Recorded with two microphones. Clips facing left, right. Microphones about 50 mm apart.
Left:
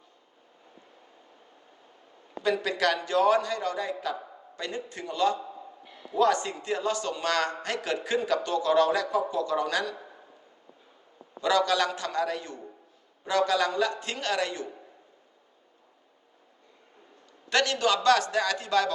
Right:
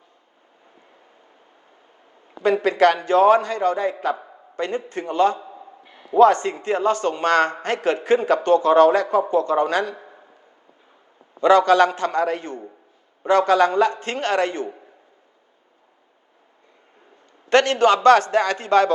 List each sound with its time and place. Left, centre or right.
2.4 s speech: right
5.4 s a sound: right
6.1 s speech: right
11.3 s speech: right
17.5 s speech: right